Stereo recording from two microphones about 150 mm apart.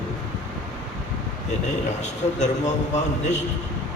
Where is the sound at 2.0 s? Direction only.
50° left (ahead or behind).